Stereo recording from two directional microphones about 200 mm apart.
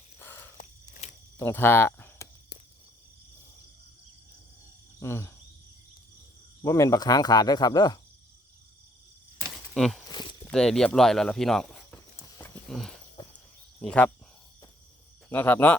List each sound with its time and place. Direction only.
0.2 s a sound: 10° left (ahead or behind)
4.9 s speech: 15° left (ahead or behind)
6.6 s speech: 15° left (ahead or behind)
9.7 s speech: centre (ahead or behind)
10.1 s a sound: 20° left (ahead or behind)
10.4 s speech: 5° left (ahead or behind)
12.4 s a sound: centre (ahead or behind)
13.3 s cricket: 5° left (ahead or behind)
15.3 s speech: 10° left (ahead or behind)